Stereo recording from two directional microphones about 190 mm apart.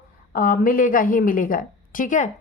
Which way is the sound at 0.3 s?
45° left (ahead or behind).